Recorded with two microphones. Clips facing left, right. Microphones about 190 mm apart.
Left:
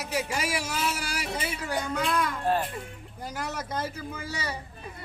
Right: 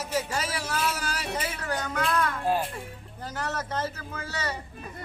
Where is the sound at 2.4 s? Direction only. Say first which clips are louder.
Left 2 dB; 5° right (ahead or behind).